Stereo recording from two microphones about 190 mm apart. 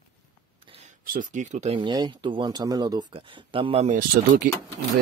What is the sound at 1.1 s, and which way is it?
Speech, 45° right (ahead or behind).